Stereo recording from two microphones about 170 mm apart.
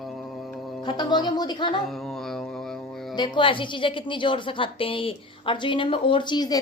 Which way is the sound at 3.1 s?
25° left (ahead or behind).